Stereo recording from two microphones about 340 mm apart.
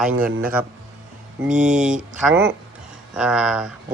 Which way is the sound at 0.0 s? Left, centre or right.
Centre.